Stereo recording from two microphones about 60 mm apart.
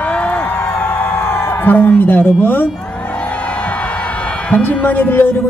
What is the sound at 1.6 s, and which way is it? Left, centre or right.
A man's voice, left.